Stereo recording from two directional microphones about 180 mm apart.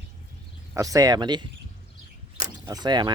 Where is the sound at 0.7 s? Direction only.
20° right (ahead or behind).